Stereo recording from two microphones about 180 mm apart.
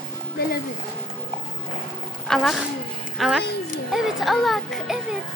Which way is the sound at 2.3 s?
5° left (ahead or behind).